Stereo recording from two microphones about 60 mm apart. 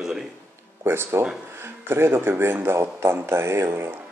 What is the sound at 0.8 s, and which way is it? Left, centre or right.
Speech, right.